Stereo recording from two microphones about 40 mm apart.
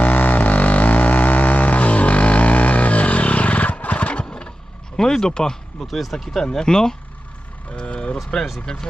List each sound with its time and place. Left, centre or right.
0.0 s a sound: left
4.9 s speech: centre
5.9 s speech: centre
6.4 s speech: centre
7.8 s vehicle: left
8.7 s speech: centre